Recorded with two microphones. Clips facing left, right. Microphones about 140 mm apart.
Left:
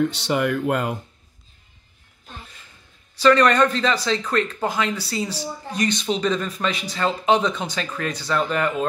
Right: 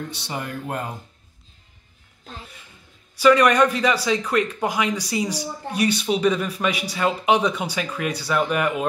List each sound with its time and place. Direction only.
0.0 s speech: 85° left
3.2 s a man's voice: 10° right (ahead or behind)